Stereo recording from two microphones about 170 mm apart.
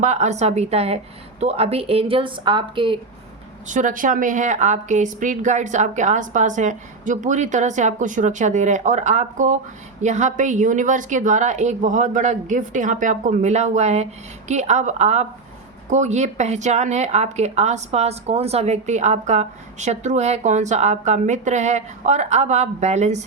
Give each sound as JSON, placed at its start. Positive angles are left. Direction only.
{"t": 0.0, "sound": "a woman's voice", "side_deg": -45}
{"t": 3.7, "sound": "speech", "side_deg": -50}